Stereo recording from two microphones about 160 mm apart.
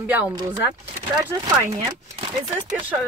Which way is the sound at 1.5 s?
25° right (ahead or behind).